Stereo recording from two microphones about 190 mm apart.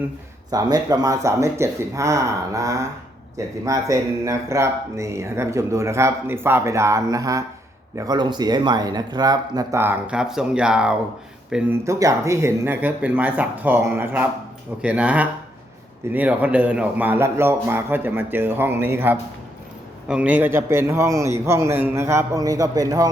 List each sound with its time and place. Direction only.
0.5 s speech: 20° right (ahead or behind)
11.9 s speech: 15° right (ahead or behind)